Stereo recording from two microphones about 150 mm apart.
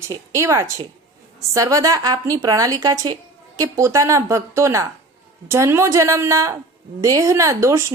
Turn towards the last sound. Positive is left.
turn(degrees=-20)  # may be behind; listen again after turning